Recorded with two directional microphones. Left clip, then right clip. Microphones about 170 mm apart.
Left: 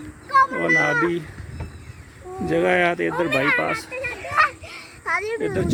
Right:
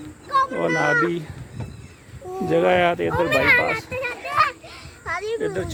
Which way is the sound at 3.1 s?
50° right (ahead or behind).